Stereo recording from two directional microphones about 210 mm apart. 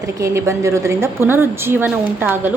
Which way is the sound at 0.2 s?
15° right (ahead or behind).